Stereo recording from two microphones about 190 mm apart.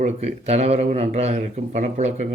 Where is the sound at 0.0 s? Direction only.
35° right (ahead or behind).